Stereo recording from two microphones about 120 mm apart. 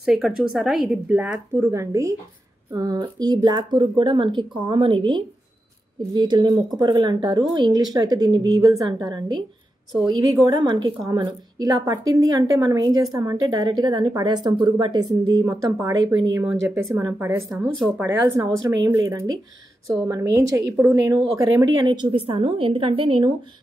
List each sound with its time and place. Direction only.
0.0 s a woman's voice: 5° right (ahead or behind); by 9.4 s 35° right (ahead or behind)
10.4 s a woman's voice: 40° right (ahead or behind)
22.1 s a woman's voice: 50° right (ahead or behind)